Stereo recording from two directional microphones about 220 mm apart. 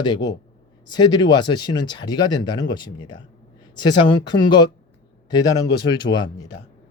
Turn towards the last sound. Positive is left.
turn(degrees=20)  # may be behind; listen again after turning